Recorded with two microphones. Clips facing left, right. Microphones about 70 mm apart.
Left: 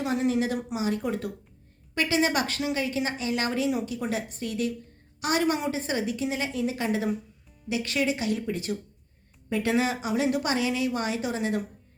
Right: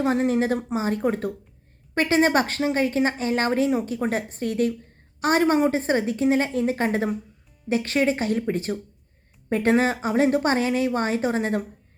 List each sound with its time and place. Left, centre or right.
0.0 s speech: right